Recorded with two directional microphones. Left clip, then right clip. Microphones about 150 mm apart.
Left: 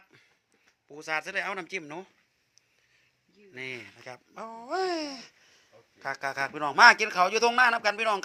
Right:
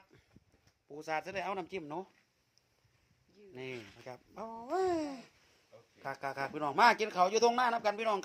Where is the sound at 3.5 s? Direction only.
5° right (ahead or behind).